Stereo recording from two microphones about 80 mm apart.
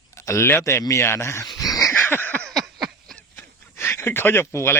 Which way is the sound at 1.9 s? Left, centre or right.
Left.